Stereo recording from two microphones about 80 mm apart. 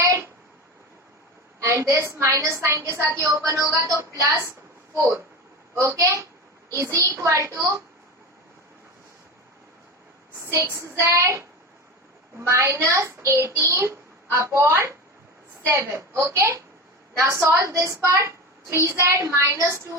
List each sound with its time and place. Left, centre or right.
0.0 s a sound: right
1.5 s a child's voice: right
10.4 s a child's voice: right